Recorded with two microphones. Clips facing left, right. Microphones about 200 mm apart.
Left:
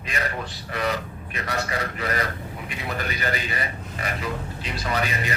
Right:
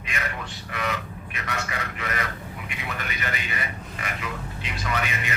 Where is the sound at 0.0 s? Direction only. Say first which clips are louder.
Left 3 dB; 35° left (ahead or behind).